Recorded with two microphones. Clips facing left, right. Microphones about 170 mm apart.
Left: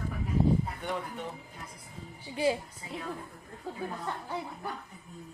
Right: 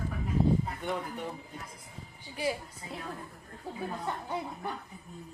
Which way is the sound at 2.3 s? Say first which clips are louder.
Left 4 dB; 25° left (ahead or behind).